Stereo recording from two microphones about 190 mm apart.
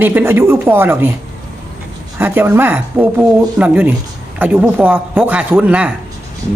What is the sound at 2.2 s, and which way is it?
A woman's voice, 10° right (ahead or behind).